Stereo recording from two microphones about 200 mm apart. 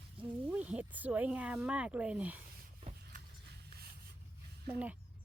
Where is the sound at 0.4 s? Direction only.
5° right (ahead or behind).